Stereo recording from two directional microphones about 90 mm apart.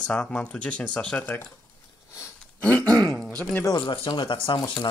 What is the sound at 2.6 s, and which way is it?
Speech, 15° left (ahead or behind).